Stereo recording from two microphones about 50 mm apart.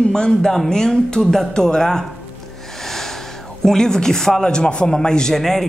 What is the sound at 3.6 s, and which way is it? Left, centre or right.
A man's voice, centre.